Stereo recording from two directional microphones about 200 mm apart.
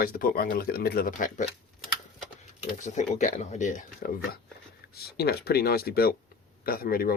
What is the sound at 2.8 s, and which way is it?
Speech, 35° left (ahead or behind).